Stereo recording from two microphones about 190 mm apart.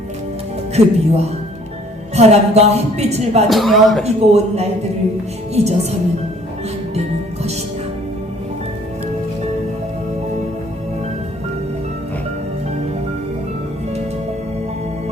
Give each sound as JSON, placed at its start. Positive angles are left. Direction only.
{"t": 0.7, "sound": "speech", "side_deg": -35}
{"t": 3.5, "sound": "speech", "side_deg": 0}
{"t": 4.0, "sound": "speech", "side_deg": -35}